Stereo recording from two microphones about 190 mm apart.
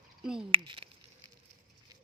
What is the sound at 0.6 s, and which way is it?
Speech, 25° right (ahead or behind).